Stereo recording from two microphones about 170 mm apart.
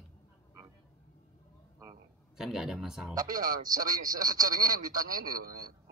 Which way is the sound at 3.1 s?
20° right (ahead or behind).